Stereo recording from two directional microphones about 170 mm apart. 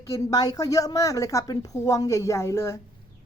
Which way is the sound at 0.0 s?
20° left (ahead or behind).